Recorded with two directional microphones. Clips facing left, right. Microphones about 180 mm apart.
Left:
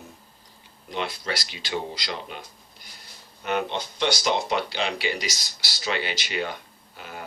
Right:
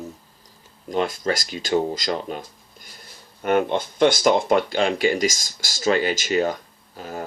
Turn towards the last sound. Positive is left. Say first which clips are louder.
# right 7 dB
turn(degrees=-40)  # may be behind; listen again after turning